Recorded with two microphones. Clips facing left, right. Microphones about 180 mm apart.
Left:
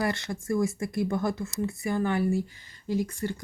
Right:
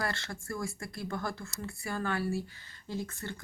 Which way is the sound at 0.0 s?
20° left (ahead or behind).